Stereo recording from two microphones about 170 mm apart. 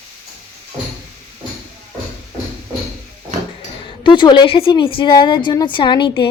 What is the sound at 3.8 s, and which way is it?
A woman's voice, 30° left (ahead or behind).